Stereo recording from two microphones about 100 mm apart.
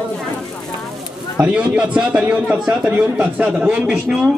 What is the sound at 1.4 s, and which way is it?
Speech, 10° right (ahead or behind).